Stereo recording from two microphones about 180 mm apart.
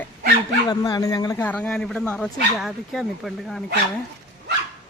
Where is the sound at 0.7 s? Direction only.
20° left (ahead or behind).